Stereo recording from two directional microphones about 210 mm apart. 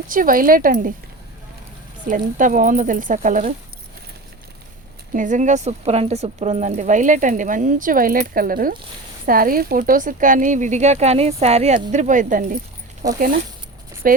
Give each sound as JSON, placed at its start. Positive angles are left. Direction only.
{"t": 0.1, "sound": "speech", "side_deg": -40}
{"t": 2.0, "sound": "speech", "side_deg": -40}
{"t": 5.1, "sound": "speech", "side_deg": -35}
{"t": 13.0, "sound": "speech", "side_deg": -15}
{"t": 14.0, "sound": "speech", "side_deg": -45}